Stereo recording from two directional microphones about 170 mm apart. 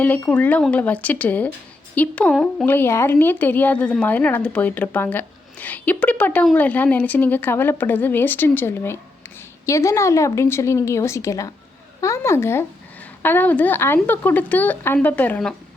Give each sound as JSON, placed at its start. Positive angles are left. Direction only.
{"t": 0.3, "sound": "a woman's voice", "side_deg": 10}